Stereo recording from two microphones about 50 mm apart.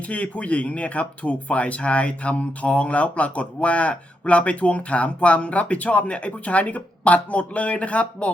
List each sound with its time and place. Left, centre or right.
0.1 s speech: left